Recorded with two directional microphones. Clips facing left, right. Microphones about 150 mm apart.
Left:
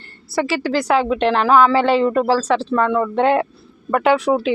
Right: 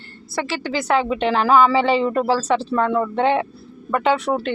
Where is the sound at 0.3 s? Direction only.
5° left (ahead or behind).